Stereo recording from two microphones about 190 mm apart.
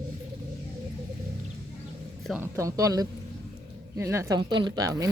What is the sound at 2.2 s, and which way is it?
Speech, 10° right (ahead or behind).